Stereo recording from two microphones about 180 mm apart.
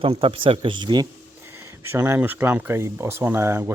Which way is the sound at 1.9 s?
15° right (ahead or behind).